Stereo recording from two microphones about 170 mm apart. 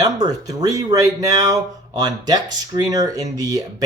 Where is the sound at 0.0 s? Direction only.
25° right (ahead or behind).